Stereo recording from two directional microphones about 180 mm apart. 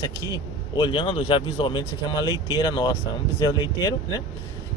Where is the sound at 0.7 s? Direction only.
25° left (ahead or behind).